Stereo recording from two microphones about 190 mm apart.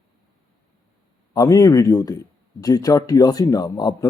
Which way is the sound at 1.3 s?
20° left (ahead or behind).